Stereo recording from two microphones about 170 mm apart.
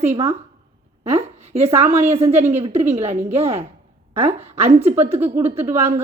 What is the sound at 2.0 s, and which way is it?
A woman's voice, 40° right (ahead or behind).